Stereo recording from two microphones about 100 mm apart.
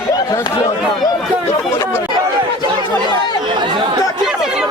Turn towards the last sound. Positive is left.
turn(degrees=-5)  # may be behind; listen again after turning